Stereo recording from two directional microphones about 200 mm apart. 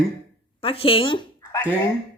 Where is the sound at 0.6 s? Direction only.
30° left (ahead or behind).